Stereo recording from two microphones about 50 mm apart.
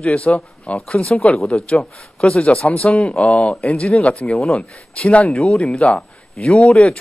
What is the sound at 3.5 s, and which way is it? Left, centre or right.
Speech, centre.